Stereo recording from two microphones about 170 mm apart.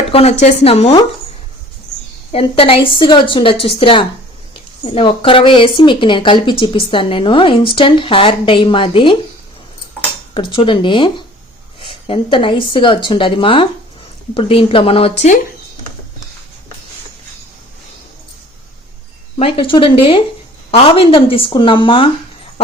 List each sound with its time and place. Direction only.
0.1 s speech: 40° left (ahead or behind)
2.3 s speech: 35° left (ahead or behind)
10.3 s speech: 30° left (ahead or behind)
19.4 s speech: 30° left (ahead or behind)